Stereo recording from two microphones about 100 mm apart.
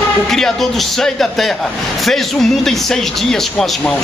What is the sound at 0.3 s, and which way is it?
Speech, 5° left (ahead or behind).